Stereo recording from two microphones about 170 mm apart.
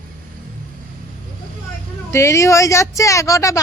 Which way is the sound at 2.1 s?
15° left (ahead or behind).